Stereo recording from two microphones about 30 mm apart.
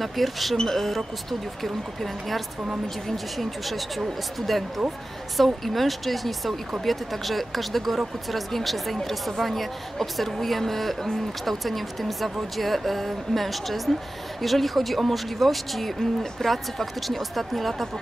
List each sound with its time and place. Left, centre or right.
0.0 s a woman's voice: centre